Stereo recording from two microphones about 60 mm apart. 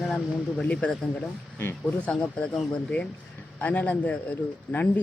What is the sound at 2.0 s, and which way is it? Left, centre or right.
Speech, centre.